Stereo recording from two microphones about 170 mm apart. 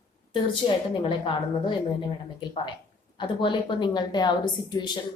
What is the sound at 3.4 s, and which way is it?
Speech, 25° left (ahead or behind).